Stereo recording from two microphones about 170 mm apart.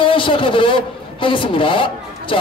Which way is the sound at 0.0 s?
30° left (ahead or behind).